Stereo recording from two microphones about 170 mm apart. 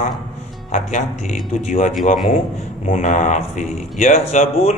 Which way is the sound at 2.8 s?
45° left (ahead or behind).